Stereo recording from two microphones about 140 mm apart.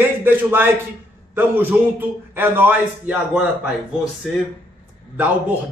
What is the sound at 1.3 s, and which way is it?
Snicker, 15° right (ahead or behind).